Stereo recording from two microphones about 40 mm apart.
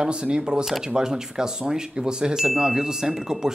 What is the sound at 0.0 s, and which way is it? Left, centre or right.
Speech, centre.